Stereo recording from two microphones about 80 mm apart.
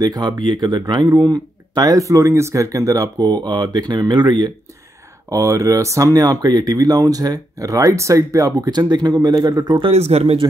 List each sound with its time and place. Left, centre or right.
0.0 s speech: right
5.3 s speech: right